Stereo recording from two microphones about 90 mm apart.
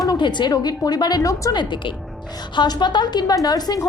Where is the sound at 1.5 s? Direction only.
60° left (ahead or behind).